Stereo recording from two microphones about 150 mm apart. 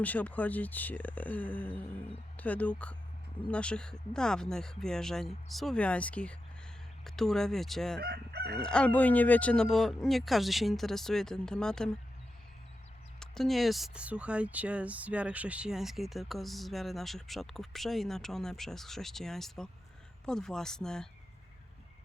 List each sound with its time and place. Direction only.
0.0 s speech: 10° left (ahead or behind)
7.9 s crowing: 90° right
8.6 s speech: 5° left (ahead or behind)
13.1 s speech: 5° left (ahead or behind)